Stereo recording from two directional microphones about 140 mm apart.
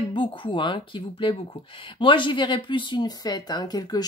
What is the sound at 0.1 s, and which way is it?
Speech, 35° left (ahead or behind).